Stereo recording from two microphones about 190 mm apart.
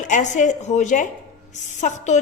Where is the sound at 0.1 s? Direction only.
40° left (ahead or behind).